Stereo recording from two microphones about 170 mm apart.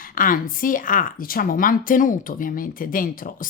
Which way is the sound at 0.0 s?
55° left (ahead or behind).